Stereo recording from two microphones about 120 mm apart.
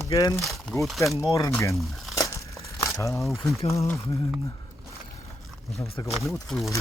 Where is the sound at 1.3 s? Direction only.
30° left (ahead or behind).